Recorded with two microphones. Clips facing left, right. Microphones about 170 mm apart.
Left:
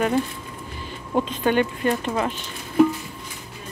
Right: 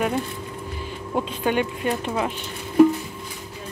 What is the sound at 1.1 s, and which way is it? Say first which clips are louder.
Speech: left 2 dB; 5° right (ahead or behind).